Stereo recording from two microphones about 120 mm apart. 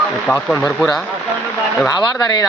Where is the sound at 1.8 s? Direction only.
30° left (ahead or behind).